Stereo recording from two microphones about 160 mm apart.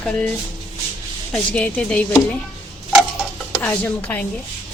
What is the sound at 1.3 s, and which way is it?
Speech, 5° left (ahead or behind).